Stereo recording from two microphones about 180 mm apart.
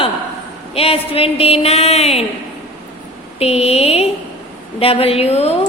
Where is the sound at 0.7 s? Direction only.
35° left (ahead or behind).